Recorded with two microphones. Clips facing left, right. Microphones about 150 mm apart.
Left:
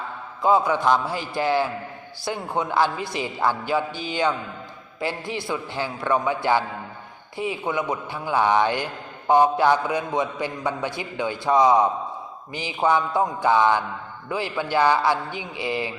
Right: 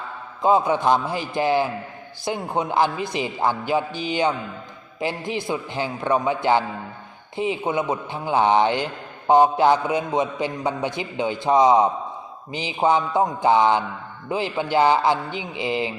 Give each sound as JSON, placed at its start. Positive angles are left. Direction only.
{"t": 0.4, "sound": "a man's voice", "side_deg": -20}